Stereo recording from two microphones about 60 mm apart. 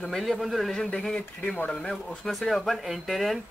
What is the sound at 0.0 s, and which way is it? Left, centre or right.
Speech, centre.